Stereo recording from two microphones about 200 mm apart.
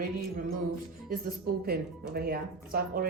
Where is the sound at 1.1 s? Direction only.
50° right (ahead or behind).